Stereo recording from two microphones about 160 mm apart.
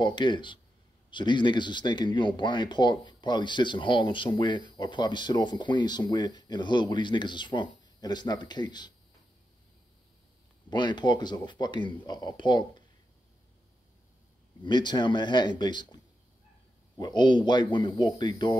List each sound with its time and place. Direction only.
0.0 s speech: 30° left (ahead or behind)
10.7 s speech: 30° left (ahead or behind)
14.6 s speech: 30° left (ahead or behind)
17.0 s speech: 25° left (ahead or behind)